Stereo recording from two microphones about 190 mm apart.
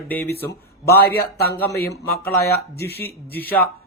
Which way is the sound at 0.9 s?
55° left (ahead or behind).